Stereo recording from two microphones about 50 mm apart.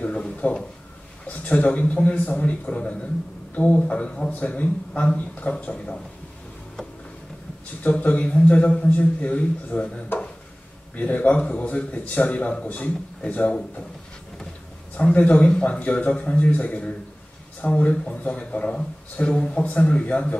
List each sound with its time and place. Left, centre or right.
0.0 s a sound: left
1.2 s a man's voice: left
7.8 s a man's voice: left
10.1 s a sound: left
11.0 s a man's voice: left
15.0 s a man's voice: left